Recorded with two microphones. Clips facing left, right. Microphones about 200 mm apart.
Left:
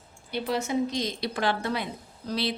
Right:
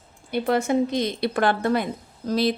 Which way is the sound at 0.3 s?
55° right (ahead or behind).